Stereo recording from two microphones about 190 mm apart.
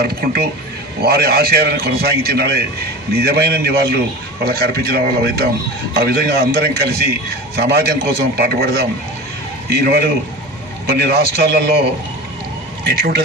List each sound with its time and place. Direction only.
0.0 s a man's voice: 55° right (ahead or behind)
12.8 s speech: 55° right (ahead or behind)